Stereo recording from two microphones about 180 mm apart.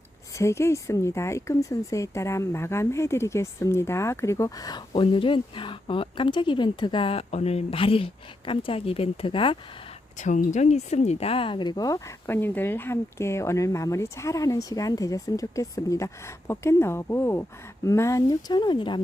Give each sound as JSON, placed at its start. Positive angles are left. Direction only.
{"t": 0.3, "sound": "speech", "side_deg": 15}
{"t": 10.2, "sound": "speech", "side_deg": 40}